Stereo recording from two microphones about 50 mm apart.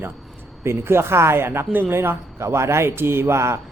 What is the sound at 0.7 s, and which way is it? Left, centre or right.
Speech, right.